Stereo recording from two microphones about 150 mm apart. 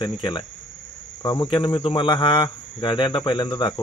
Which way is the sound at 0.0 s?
30° left (ahead or behind).